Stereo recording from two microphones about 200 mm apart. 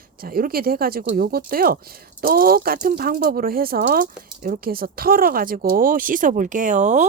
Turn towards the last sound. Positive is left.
turn(degrees=-35)  # may be behind; listen again after turning